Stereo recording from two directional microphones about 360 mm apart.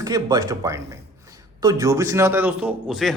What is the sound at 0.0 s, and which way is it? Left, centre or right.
A man's voice, centre.